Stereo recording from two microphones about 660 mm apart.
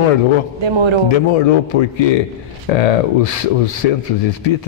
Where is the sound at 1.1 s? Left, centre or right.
Left.